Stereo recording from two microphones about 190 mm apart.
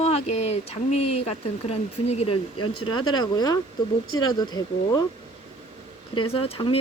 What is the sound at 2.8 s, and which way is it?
Speech, 25° left (ahead or behind).